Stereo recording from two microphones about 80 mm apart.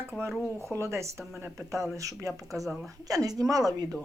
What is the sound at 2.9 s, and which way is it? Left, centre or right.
Speech, right.